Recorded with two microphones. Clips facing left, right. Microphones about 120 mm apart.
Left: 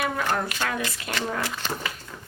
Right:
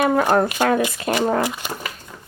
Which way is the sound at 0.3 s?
45° right (ahead or behind).